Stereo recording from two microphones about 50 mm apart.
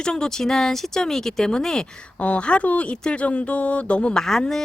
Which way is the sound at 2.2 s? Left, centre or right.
Left.